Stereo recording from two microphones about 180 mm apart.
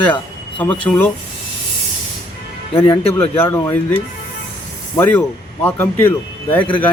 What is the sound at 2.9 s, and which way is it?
Speech, 30° left (ahead or behind).